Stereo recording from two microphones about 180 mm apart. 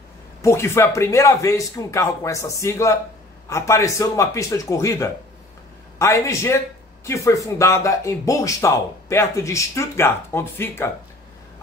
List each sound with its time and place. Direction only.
0.4 s speech: 15° left (ahead or behind)